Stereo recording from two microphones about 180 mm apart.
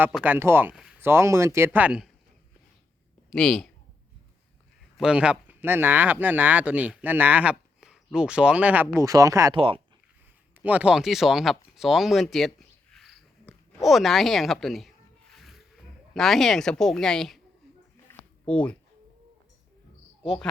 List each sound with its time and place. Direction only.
0.0 s speech: 10° right (ahead or behind)
3.2 s a woman's voice: centre (ahead or behind)
4.9 s speech: 5° right (ahead or behind)
9.6 s speech: 30° right (ahead or behind)
10.6 s a sound: 10° right (ahead or behind)
13.8 s speech: centre (ahead or behind)
15.3 s music: centre (ahead or behind)
16.1 s speech: centre (ahead or behind)
18.1 s a sound: 5° left (ahead or behind)
20.2 s speech: 5° left (ahead or behind)